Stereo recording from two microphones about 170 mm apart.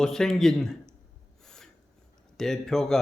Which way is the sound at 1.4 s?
5° left (ahead or behind).